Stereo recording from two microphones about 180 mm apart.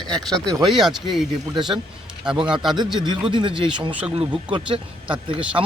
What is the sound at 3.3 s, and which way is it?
Speech, 25° right (ahead or behind).